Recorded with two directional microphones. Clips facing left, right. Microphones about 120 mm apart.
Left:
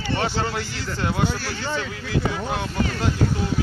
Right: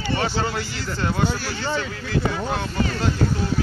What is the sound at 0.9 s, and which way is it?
Speech, 15° left (ahead or behind).